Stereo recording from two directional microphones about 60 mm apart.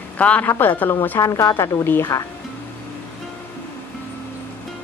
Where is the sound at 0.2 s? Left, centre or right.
Left.